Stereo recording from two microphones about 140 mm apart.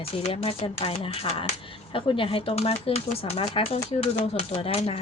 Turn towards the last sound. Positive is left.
turn(degrees=45)  # may be behind; listen again after turning